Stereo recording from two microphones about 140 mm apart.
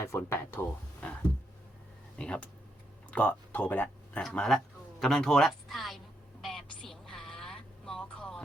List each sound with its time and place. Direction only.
0.0 s speech: 20° left (ahead or behind)
2.1 s speech: 10° left (ahead or behind)
6.4 s a sound: centre (ahead or behind)